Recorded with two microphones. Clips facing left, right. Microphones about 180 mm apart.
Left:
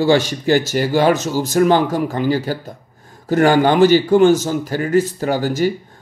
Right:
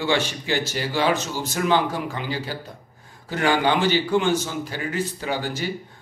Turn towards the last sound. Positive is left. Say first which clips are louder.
# left 9 dB
turn(degrees=45)  # may be behind; listen again after turning